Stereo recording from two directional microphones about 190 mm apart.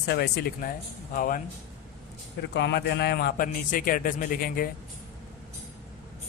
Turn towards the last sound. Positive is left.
turn(degrees=50)  # may be behind; listen again after turning